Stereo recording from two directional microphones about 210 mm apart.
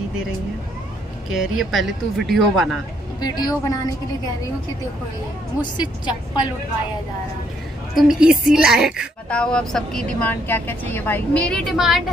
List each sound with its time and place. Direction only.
1.3 s a woman's voice: centre (ahead or behind)
3.2 s a woman's voice: 20° left (ahead or behind)
5.6 s a woman's voice: 20° left (ahead or behind)
7.9 s a woman's voice: 5° right (ahead or behind)